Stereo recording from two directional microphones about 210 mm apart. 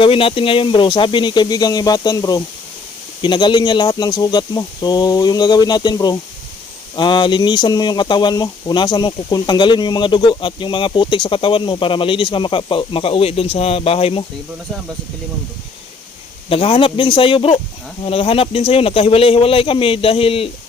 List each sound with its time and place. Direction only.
0.0 s speech: 25° left (ahead or behind)
16.5 s speech: 25° left (ahead or behind)